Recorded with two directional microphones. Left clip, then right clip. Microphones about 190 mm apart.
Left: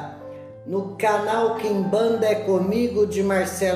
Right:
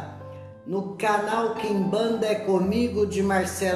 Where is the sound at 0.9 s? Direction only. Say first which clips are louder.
Left 3 dB; 20° right (ahead or behind).